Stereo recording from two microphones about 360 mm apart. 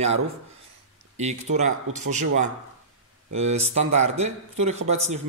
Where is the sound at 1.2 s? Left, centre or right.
Centre.